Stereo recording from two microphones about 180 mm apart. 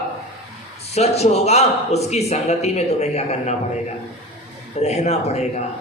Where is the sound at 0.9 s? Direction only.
35° left (ahead or behind).